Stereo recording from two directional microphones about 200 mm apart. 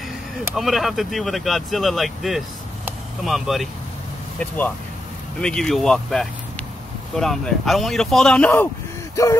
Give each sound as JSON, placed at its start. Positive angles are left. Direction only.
{"t": 0.6, "sound": "speech", "side_deg": 0}
{"t": 9.1, "sound": "gasp", "side_deg": 15}